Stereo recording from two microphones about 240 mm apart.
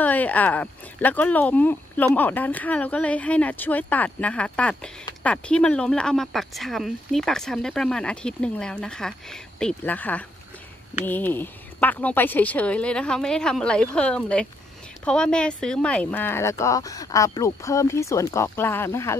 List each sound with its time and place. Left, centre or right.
0.0 s speech: centre